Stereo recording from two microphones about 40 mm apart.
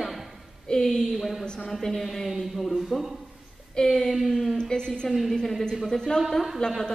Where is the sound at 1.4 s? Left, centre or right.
Left.